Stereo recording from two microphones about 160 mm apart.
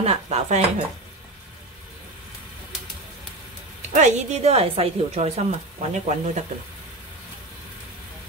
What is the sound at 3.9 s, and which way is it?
A woman's voice, 45° right (ahead or behind).